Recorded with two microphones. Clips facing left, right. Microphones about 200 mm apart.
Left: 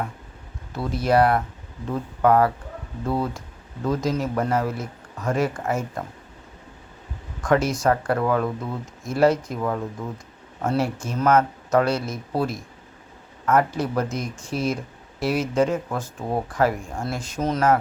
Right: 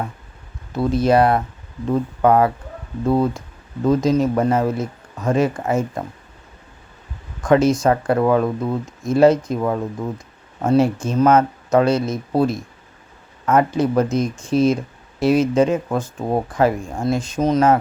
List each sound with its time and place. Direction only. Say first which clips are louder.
0.7 s speech: right 5 dB; 20° right (ahead or behind)
7.4 s speech: right 5 dB; 20° right (ahead or behind)